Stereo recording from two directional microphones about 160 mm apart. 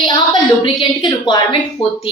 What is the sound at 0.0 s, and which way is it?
A woman's voice, 25° left (ahead or behind).